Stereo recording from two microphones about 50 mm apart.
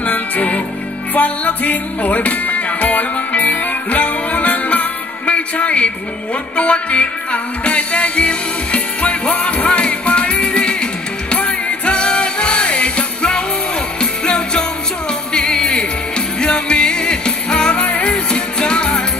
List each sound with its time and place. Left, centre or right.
0.0 s music: left